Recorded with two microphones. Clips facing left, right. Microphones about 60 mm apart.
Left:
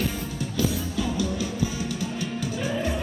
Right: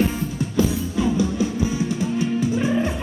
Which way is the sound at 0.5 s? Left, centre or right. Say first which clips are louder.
Right 5 dB; right.